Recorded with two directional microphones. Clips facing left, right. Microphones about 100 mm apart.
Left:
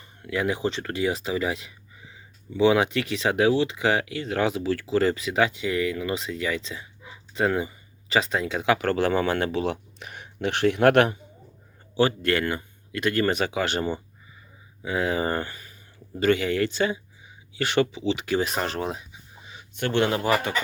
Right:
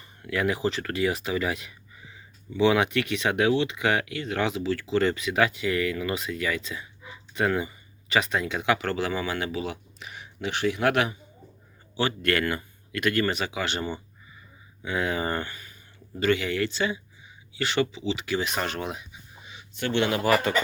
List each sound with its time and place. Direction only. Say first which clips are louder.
0.2 s speech: even; 25° left (ahead or behind); by 11.2 s 55° left (ahead or behind)
12.2 s speech: left 1 dB; 25° left (ahead or behind)
13.2 s speech: left 4 dB; 45° left (ahead or behind)
14.8 s speech: left 2 dB; 30° left (ahead or behind)
19.7 s speech: left 2 dB; 50° left (ahead or behind)